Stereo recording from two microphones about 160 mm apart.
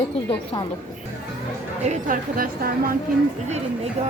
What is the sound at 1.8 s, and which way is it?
A woman's voice, 55° right (ahead or behind).